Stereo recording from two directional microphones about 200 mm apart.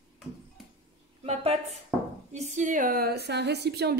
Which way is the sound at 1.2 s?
30° right (ahead or behind).